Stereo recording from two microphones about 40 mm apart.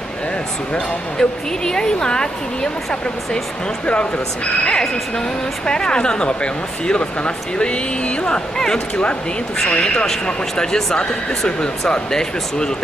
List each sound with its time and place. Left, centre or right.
0.7 s speech: centre
5.7 s speech: left